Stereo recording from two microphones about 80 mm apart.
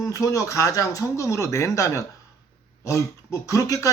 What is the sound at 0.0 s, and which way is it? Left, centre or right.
Speech, left.